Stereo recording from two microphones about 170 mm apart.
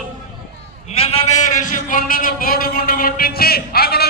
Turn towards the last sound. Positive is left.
turn(degrees=65)  # may be behind; listen again after turning